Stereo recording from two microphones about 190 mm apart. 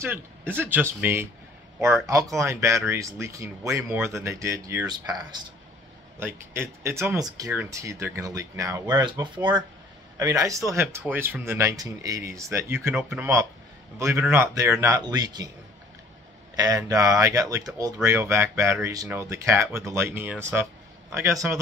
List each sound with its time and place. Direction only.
0.0 s speech: 10° right (ahead or behind)
16.5 s speech: 20° right (ahead or behind)